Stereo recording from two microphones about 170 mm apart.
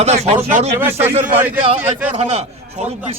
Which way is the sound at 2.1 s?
35° right (ahead or behind).